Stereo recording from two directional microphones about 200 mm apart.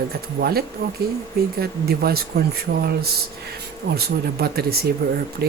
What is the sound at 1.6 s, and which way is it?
Speech, 50° right (ahead or behind).